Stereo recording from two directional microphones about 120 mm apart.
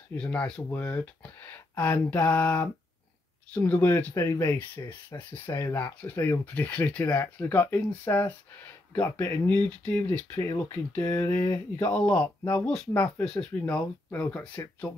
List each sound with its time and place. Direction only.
0.1 s speech: 10° left (ahead or behind)
9.1 s speech: 30° left (ahead or behind)
9.5 s speech: 15° left (ahead or behind)
10.4 s speech: 30° left (ahead or behind)
11.0 s a sound: 20° left (ahead or behind)
11.9 s speech: 5° left (ahead or behind)